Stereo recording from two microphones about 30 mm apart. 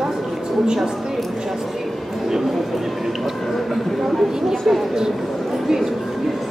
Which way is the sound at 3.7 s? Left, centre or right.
Centre.